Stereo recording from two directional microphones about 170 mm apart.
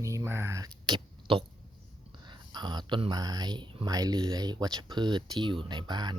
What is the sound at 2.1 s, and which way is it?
Speech, 25° right (ahead or behind).